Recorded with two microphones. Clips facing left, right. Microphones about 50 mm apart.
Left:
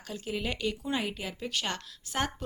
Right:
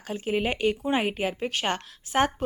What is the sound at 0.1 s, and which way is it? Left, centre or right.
Speech, right.